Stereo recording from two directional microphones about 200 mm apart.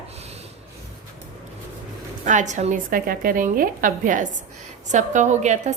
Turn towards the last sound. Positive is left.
turn(degrees=-35)  # may be behind; listen again after turning